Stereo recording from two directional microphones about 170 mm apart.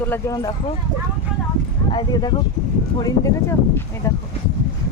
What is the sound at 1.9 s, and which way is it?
Speech, 30° left (ahead or behind).